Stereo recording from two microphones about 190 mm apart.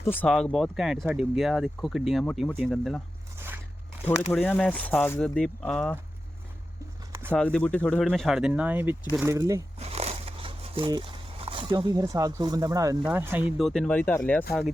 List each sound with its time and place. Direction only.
0.0 s speech: 10° left (ahead or behind)
3.3 s biting: 10° right (ahead or behind)
4.3 s speech: 5° left (ahead or behind)
7.3 s speech: 5° left (ahead or behind); by 9.6 s 15° right (ahead or behind)
9.7 s a sound: 35° right (ahead or behind); by 13.0 s 20° right (ahead or behind)
13.1 s speech: 10° right (ahead or behind)
13.6 s speech: centre (ahead or behind)